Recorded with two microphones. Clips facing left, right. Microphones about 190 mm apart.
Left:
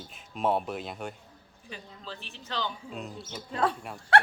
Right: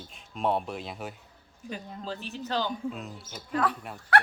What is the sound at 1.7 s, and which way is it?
A man's voice, 40° right (ahead or behind).